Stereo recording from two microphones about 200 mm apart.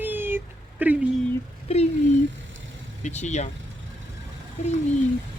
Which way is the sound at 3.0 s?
35° left (ahead or behind).